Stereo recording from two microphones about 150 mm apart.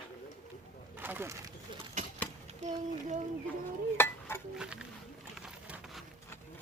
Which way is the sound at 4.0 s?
15° left (ahead or behind).